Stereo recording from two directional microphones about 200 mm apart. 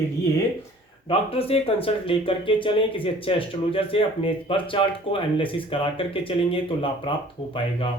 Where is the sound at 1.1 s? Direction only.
30° left (ahead or behind).